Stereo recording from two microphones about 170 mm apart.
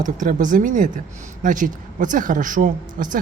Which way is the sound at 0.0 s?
50° right (ahead or behind).